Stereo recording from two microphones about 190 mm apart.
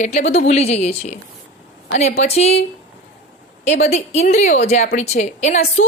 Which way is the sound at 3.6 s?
35° left (ahead or behind).